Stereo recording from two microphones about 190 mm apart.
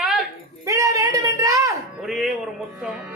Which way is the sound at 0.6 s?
15° right (ahead or behind).